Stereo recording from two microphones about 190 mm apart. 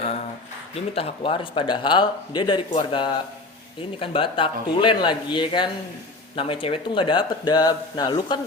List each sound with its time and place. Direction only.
0.9 s speech: 30° left (ahead or behind)